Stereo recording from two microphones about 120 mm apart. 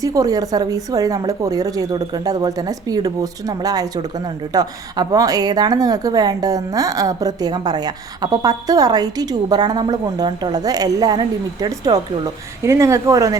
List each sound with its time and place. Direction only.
0.0 s a woman's voice: 30° right (ahead or behind)